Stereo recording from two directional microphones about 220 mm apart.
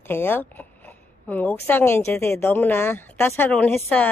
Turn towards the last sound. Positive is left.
turn(degrees=5)  # may be behind; listen again after turning